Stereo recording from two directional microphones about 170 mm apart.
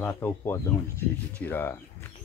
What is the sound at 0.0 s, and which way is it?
Speech, 10° left (ahead or behind).